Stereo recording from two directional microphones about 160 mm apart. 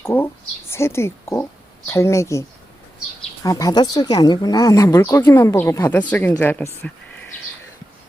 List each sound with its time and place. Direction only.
0.0 s speech: 15° left (ahead or behind)
3.4 s a woman's voice: 20° left (ahead or behind)